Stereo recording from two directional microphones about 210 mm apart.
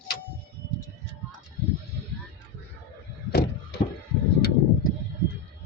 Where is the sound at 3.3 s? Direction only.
50° left (ahead or behind).